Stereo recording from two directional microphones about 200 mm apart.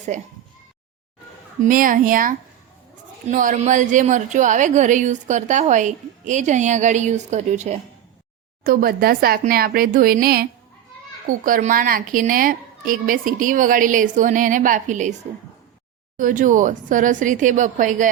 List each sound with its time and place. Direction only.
0.1 s a woman's voice: 35° right (ahead or behind)
1.6 s a woman's voice: 45° right (ahead or behind)
8.6 s a woman's voice: 45° right (ahead or behind)
16.1 s a woman's voice: 40° right (ahead or behind)